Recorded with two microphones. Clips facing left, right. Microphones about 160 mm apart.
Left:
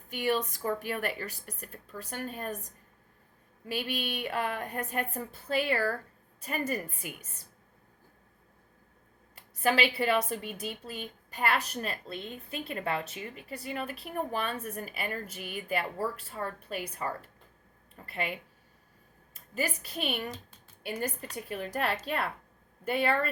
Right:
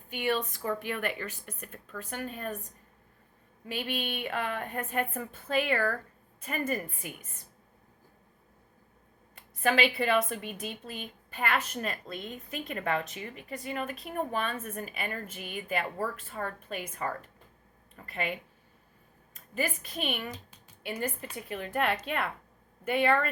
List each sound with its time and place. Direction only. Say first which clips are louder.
0.1 s speech: left 1 dB; 40° left (ahead or behind)
3.7 s speech: even; 40° left (ahead or behind)
9.3 s a sound: even; 35° left (ahead or behind)
9.9 s speech: right 1 dB; 35° left (ahead or behind)
19.5 s a woman's voice: right 1 dB; 35° left (ahead or behind)